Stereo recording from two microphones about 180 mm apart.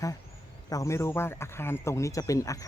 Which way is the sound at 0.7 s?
15° left (ahead or behind).